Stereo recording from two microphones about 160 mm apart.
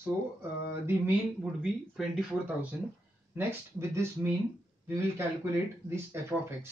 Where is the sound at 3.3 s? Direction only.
15° right (ahead or behind).